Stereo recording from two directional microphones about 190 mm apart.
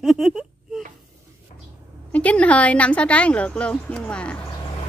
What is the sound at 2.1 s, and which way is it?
Speech, 5° left (ahead or behind).